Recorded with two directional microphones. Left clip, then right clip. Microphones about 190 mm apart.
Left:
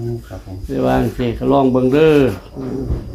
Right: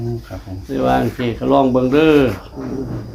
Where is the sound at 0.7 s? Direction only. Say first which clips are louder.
Even; 40° left (ahead or behind).